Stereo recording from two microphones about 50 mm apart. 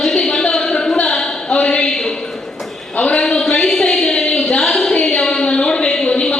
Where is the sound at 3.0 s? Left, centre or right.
Left.